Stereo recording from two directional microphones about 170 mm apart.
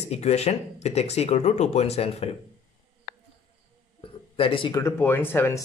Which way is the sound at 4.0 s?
30° left (ahead or behind).